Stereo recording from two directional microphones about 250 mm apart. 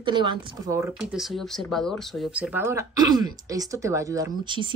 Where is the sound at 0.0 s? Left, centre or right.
Centre.